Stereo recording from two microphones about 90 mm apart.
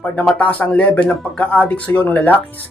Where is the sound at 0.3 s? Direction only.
15° left (ahead or behind).